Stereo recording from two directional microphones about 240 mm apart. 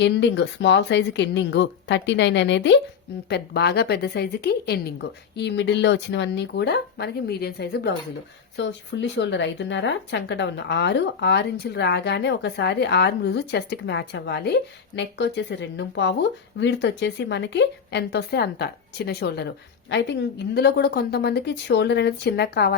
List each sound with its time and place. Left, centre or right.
0.0 s speech: left